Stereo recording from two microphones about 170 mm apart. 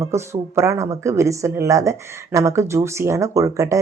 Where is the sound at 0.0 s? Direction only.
15° right (ahead or behind).